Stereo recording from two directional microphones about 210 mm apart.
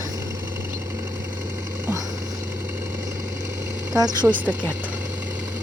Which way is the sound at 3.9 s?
20° right (ahead or behind).